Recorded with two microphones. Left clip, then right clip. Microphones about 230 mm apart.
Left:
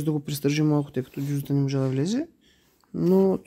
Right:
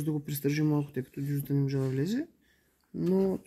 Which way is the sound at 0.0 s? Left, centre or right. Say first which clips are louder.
Left 6 dB; centre.